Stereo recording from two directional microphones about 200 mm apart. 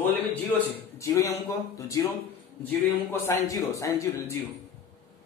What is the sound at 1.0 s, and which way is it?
Speech, 15° left (ahead or behind).